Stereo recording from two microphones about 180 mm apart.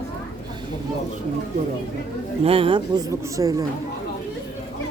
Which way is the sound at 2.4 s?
30° right (ahead or behind).